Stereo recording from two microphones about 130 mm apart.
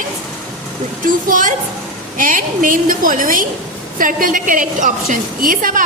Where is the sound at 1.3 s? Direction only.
90° right.